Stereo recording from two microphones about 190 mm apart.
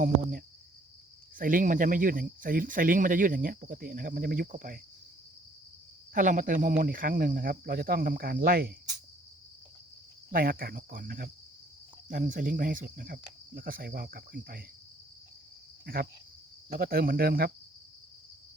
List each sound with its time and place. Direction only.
0.0 s cricket: 45° right (ahead or behind)
1.4 s speech: 45° right (ahead or behind)
6.1 s speech: 45° right (ahead or behind)
10.3 s speech: 50° right (ahead or behind)
15.9 s speech: 50° right (ahead or behind)